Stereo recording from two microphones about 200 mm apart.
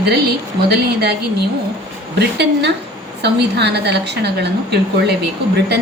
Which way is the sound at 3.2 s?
55° right (ahead or behind).